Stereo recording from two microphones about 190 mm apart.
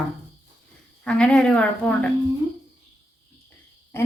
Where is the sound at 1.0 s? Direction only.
5° left (ahead or behind).